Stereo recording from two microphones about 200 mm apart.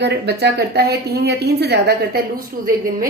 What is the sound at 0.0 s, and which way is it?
A woman's voice, 55° right (ahead or behind).